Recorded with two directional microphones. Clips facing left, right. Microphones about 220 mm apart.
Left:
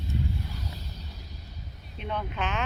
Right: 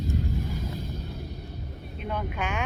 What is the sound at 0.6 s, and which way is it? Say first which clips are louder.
Music: right 8 dB; 50° right (ahead or behind).